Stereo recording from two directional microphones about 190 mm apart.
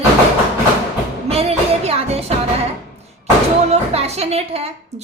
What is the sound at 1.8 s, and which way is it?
Music, 35° right (ahead or behind).